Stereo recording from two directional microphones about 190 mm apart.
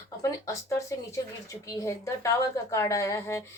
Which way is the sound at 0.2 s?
15° left (ahead or behind).